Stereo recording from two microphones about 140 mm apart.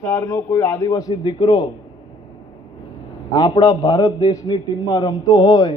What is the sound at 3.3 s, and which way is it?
A man's voice, 30° left (ahead or behind).